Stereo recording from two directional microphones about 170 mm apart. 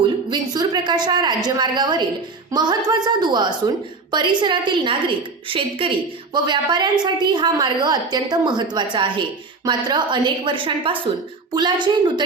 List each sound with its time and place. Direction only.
0.3 s a woman's voice: 25° right (ahead or behind)